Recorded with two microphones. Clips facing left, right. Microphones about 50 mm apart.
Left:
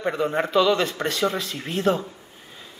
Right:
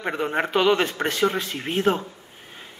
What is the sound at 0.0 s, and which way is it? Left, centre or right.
A man's voice, right.